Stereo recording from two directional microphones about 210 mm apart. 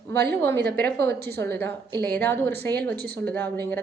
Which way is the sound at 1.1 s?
50° right (ahead or behind).